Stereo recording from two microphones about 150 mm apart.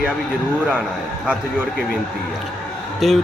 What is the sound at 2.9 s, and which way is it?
Speech, centre (ahead or behind).